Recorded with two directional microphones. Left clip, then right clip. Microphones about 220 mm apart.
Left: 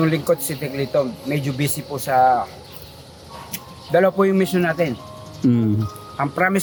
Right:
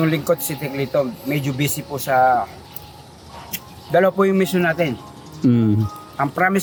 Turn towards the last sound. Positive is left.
turn(degrees=5)  # may be behind; listen again after turning